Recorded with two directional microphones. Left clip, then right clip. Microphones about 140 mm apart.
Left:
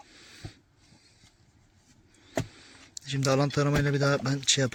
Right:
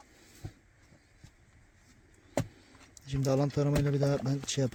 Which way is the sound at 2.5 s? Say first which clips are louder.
Left 9 dB; 10° right (ahead or behind).